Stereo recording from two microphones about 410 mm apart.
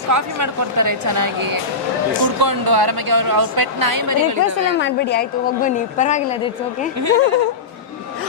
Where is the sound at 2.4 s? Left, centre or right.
Right.